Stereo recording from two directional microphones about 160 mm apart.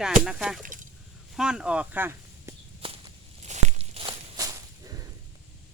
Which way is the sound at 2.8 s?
35° right (ahead or behind).